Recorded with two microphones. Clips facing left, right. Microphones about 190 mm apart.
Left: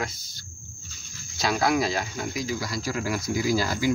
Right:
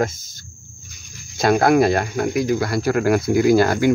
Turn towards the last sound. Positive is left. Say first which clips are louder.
# right 10 dB
turn(degrees=-60)  # may be behind; listen again after turning